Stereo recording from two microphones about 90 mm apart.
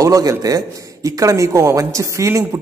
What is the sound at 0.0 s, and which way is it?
A man's voice, 40° right (ahead or behind).